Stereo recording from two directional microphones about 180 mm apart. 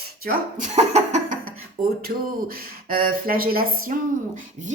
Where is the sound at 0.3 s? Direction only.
45° right (ahead or behind).